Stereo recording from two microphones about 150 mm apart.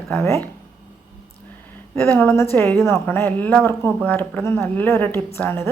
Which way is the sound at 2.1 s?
15° left (ahead or behind).